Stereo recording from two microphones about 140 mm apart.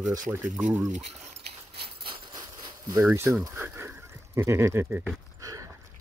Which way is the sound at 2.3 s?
30° right (ahead or behind).